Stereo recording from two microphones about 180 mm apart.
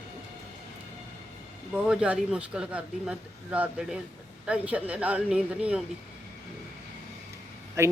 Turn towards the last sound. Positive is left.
turn(degrees=-15)  # may be behind; listen again after turning